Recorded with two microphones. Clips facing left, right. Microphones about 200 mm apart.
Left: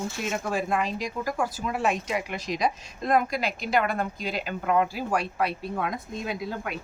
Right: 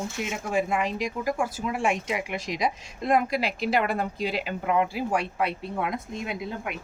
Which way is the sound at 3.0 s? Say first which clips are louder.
Right 1 dB; 30° right (ahead or behind).